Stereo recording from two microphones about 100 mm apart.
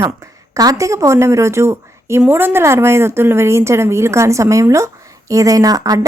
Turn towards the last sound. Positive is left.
turn(degrees=-35)  # may be behind; listen again after turning